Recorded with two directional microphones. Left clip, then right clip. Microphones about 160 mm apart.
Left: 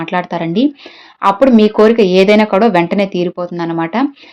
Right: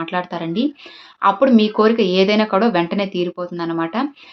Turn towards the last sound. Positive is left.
turn(degrees=40)  # may be behind; listen again after turning